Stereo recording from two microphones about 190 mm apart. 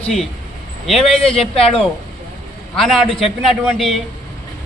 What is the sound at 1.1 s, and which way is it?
Speech, 30° left (ahead or behind).